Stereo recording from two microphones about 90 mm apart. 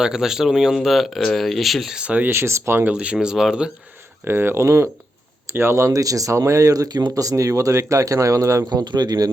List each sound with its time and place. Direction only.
0.0 s speech: 5° right (ahead or behind)
2.3 s speech: 30° right (ahead or behind)
2.9 s speech: 10° right (ahead or behind)
4.3 s speech: 25° right (ahead or behind)
8.8 s speech: 55° right (ahead or behind)